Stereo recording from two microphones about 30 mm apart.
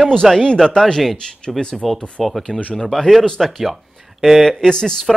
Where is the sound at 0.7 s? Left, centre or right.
Centre.